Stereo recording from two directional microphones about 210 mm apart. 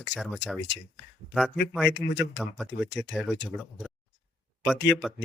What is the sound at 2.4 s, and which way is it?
Speech, centre (ahead or behind).